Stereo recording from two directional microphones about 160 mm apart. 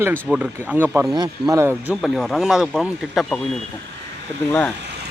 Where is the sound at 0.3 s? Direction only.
10° right (ahead or behind).